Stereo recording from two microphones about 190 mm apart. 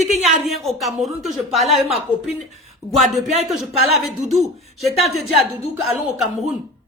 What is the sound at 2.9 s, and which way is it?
Speech, centre (ahead or behind).